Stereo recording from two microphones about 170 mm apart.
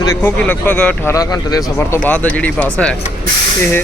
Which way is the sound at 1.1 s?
20° left (ahead or behind).